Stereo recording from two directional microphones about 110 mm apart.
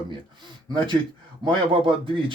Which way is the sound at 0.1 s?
45° right (ahead or behind).